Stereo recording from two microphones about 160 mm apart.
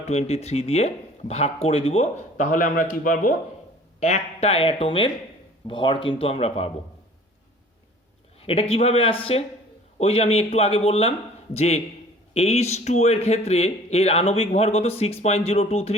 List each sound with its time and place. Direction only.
0.1 s a man's voice: 40° left (ahead or behind); by 3.3 s 60° left (ahead or behind)
4.0 s a man's voice: 40° left (ahead or behind)
8.4 s a man's voice: 35° left (ahead or behind)